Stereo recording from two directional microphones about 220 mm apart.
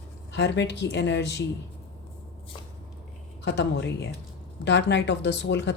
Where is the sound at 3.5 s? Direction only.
50° left (ahead or behind).